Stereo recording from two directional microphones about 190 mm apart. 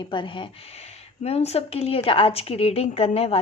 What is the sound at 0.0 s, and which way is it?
A woman's voice, 25° left (ahead or behind).